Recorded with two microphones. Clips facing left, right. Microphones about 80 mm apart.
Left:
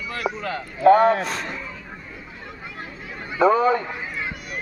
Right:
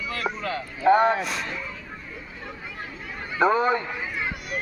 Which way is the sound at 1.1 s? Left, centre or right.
Left.